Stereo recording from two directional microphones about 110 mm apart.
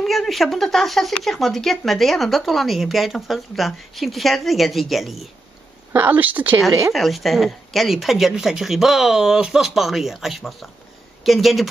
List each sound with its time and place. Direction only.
0.0 s speech: centre (ahead or behind)
5.9 s speech: 15° right (ahead or behind)
6.9 s speech: centre (ahead or behind)